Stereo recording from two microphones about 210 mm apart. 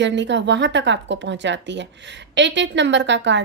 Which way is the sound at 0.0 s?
60° right (ahead or behind).